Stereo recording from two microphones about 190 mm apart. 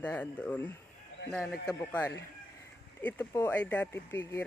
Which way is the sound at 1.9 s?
10° left (ahead or behind).